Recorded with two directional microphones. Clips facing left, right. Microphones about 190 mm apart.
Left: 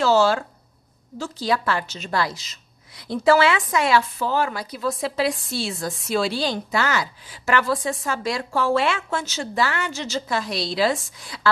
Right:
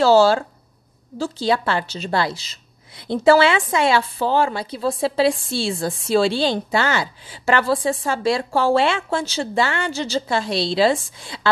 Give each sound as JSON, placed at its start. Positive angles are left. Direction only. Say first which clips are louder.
{"t": 0.0, "sound": "a woman's voice", "louder": "right 4 dB", "side_deg": -35}